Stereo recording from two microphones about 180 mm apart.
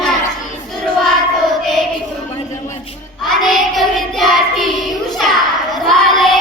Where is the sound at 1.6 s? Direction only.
Centre (ahead or behind).